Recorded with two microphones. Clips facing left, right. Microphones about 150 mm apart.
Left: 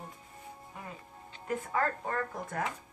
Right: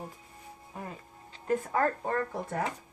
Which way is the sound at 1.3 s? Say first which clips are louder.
Right 5 dB; 30° right (ahead or behind).